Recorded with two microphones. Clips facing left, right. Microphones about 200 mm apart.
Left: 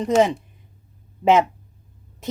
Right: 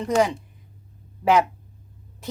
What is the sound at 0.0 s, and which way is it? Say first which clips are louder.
Speech: left 3 dB; 20° left (ahead or behind).